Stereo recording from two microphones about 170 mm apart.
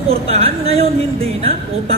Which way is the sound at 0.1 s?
35° right (ahead or behind).